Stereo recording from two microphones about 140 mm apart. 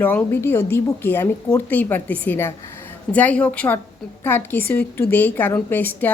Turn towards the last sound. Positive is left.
turn(degrees=15)  # may be behind; listen again after turning